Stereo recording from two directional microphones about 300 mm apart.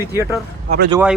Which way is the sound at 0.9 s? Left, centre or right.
Centre.